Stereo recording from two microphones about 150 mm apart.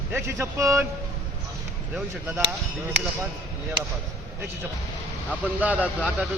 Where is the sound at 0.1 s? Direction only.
15° right (ahead or behind).